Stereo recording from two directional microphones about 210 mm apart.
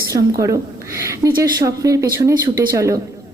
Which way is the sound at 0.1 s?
15° right (ahead or behind).